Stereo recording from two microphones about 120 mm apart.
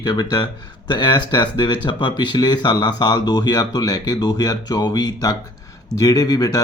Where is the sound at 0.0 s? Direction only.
40° left (ahead or behind).